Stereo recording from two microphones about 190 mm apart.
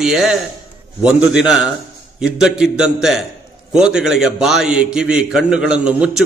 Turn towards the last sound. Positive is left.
turn(degrees=-5)  # may be behind; listen again after turning